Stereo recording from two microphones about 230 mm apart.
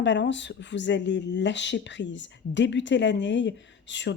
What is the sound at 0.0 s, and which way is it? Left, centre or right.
Speech, left.